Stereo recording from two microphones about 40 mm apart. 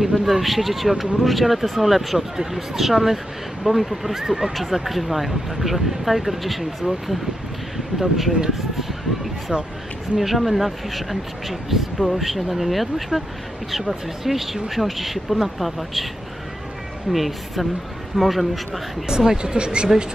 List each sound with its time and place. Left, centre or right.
0.0 s speech: centre
17.1 s speech: centre
19.0 s speech: centre